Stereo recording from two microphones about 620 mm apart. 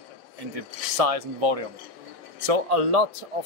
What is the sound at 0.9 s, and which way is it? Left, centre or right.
Speech, right.